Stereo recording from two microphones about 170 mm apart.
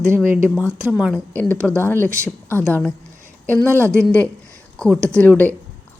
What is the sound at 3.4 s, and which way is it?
Speech, 10° left (ahead or behind).